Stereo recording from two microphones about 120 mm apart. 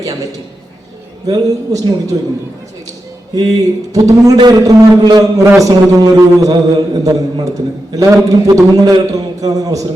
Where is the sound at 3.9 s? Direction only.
30° right (ahead or behind).